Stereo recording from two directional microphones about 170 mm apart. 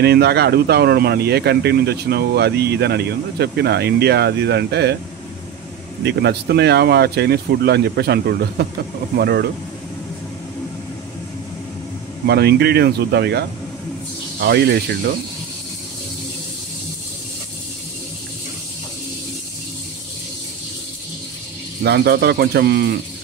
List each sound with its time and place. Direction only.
0.0 s speech: 70° right (ahead or behind)
6.0 s speech: 75° right (ahead or behind)
12.3 s speech: 75° right (ahead or behind)
21.8 s speech: 75° right (ahead or behind)